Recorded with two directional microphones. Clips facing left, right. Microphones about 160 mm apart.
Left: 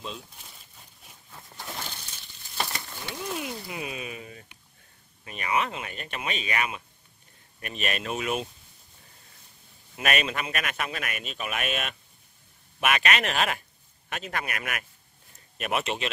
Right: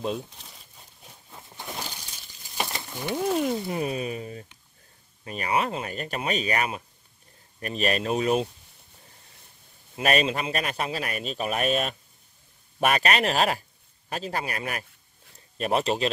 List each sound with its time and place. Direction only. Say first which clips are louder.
1.3 s a sound: right 2 dB; 15° right (ahead or behind)
3.2 s speech: right 9 dB; 45° right (ahead or behind)
9.9 s speech: right 4 dB; 30° right (ahead or behind)